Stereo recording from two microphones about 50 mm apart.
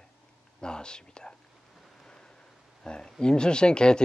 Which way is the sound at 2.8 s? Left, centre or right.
Centre.